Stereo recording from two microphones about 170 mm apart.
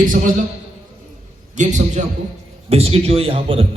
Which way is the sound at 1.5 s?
45° right (ahead or behind).